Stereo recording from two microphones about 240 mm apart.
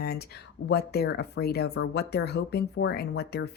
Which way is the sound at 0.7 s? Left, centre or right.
Left.